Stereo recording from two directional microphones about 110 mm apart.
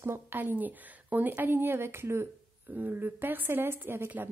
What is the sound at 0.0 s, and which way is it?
A woman's voice, 20° right (ahead or behind).